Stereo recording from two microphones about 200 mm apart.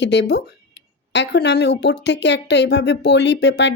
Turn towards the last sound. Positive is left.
turn(degrees=60)  # may be behind; listen again after turning